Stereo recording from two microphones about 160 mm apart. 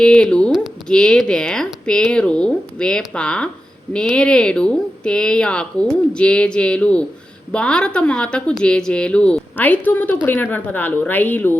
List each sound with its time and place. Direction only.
0.0 s a woman's voice: 5° left (ahead or behind)